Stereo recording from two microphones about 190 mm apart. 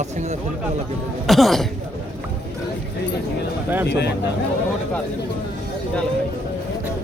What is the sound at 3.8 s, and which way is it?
Speech, 65° left (ahead or behind).